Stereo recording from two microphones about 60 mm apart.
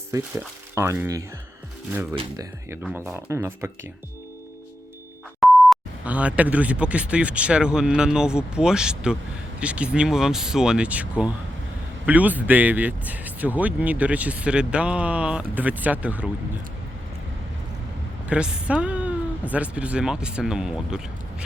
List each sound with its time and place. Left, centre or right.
0.8 s speech: right
2.9 s speech: right
5.4 s beep: centre
6.1 s speech: right
10.8 s speech: right
18.3 s speech: centre